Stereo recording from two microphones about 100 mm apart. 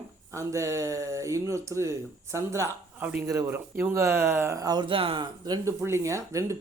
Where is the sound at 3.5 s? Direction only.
25° right (ahead or behind).